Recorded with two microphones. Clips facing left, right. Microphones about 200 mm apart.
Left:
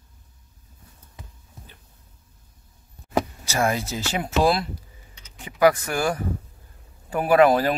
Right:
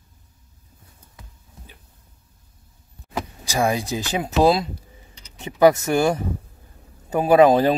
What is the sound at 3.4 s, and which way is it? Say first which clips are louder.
Speech: right 2 dB; 15° right (ahead or behind).